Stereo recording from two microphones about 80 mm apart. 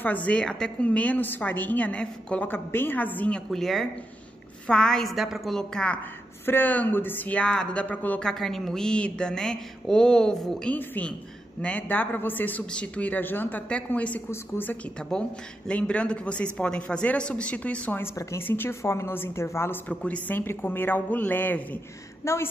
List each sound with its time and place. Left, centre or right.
0.0 s a woman's voice: centre
3.4 s a woman's voice: centre
6.4 s a woman's voice: left
8.3 s a woman's voice: centre
10.7 s a woman's voice: centre
14.3 s a woman's voice: left
15.0 s a woman's voice: centre
17.9 s a woman's voice: left
19.9 s a woman's voice: centre
22.2 s a woman's voice: left